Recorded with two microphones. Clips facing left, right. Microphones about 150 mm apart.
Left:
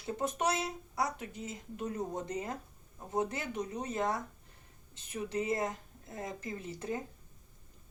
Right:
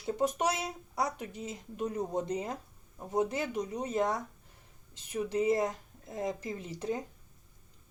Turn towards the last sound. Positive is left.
turn(degrees=-20)  # may be behind; listen again after turning